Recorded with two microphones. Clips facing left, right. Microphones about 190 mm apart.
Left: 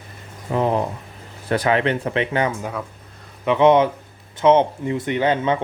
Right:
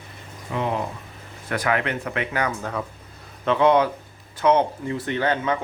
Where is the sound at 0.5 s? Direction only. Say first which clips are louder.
Left 6 dB; 40° left (ahead or behind).